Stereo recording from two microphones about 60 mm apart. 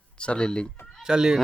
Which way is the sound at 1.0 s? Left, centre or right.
Centre.